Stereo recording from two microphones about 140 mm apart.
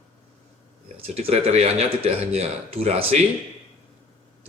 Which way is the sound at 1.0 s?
45° right (ahead or behind).